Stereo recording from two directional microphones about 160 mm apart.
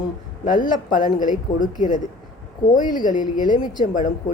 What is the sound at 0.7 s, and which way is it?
Speech, 60° left (ahead or behind).